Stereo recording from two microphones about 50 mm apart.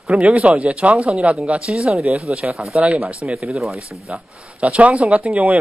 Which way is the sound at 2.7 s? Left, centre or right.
Right.